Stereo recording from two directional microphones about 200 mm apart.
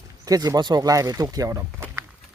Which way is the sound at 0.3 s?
20° right (ahead or behind).